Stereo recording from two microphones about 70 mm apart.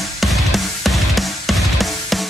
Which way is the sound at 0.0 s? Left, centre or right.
Centre.